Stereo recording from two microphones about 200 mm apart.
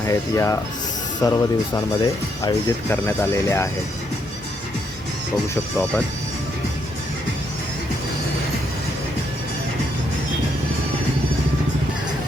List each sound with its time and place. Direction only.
0.1 s speech: 15° left (ahead or behind)